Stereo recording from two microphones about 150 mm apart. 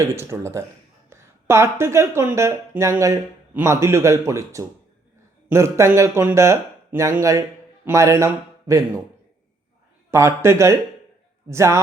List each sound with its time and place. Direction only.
0.2 s a man's voice: 15° right (ahead or behind)
10.1 s a man's voice: 20° right (ahead or behind)